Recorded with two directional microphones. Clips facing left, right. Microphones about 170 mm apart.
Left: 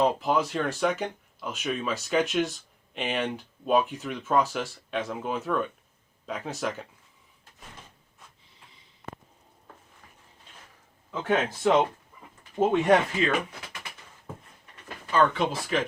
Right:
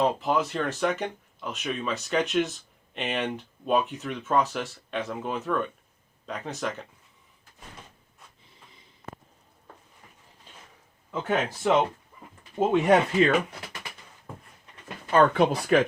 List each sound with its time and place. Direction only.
0.0 s speech: centre (ahead or behind)
11.1 s speech: 5° right (ahead or behind)
12.4 s speech: 15° right (ahead or behind)
15.1 s speech: 60° right (ahead or behind)